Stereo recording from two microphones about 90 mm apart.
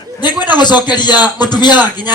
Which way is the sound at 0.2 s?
55° left (ahead or behind).